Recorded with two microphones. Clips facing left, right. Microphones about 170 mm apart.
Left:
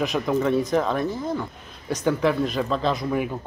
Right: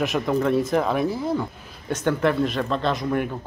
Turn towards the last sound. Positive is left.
turn(degrees=5)  # may be behind; listen again after turning